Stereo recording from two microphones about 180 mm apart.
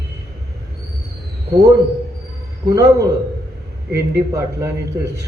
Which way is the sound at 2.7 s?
15° right (ahead or behind).